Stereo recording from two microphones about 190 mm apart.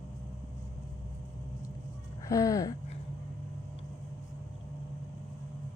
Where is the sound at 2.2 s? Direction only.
15° left (ahead or behind).